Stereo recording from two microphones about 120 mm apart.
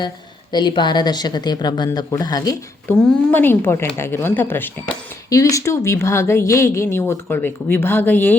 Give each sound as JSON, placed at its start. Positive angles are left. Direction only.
{"t": 0.5, "sound": "speech", "side_deg": 40}
{"t": 3.1, "sound": "speech", "side_deg": 10}
{"t": 5.3, "sound": "speech", "side_deg": 25}